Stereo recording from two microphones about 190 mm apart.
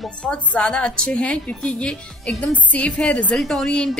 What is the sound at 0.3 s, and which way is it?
A woman's voice, 5° left (ahead or behind).